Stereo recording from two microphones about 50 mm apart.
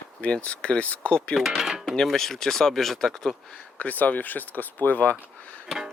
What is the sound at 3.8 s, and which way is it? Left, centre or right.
Speech, left.